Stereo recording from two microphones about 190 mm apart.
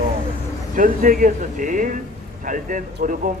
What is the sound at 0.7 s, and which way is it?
A man's voice, 45° right (ahead or behind).